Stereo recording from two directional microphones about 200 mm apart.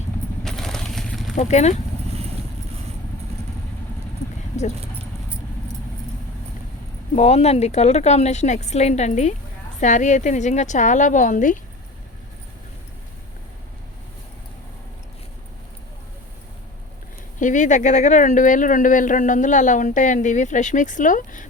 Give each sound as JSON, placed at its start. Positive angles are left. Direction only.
{"t": 0.4, "sound": "a sound", "side_deg": 0}
{"t": 1.4, "sound": "speech", "side_deg": 35}
{"t": 4.6, "sound": "speech", "side_deg": 35}
{"t": 7.2, "sound": "speech", "side_deg": 35}
{"t": 17.4, "sound": "speech", "side_deg": 40}